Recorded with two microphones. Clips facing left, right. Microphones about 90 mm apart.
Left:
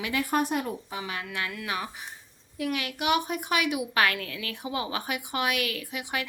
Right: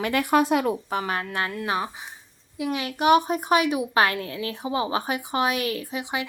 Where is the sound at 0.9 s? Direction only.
45° right (ahead or behind).